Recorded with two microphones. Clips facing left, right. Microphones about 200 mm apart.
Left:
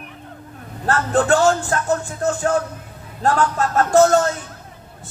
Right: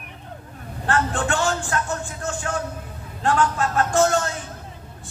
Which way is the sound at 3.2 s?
40° left (ahead or behind).